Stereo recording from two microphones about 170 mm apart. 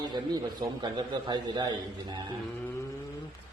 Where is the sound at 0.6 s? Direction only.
25° right (ahead or behind).